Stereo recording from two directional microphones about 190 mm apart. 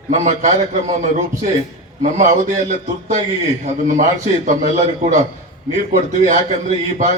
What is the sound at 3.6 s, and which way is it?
A man's voice, 40° right (ahead or behind).